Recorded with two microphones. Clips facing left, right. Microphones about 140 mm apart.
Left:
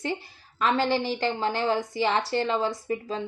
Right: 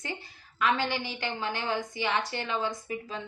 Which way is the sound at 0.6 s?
35° left (ahead or behind).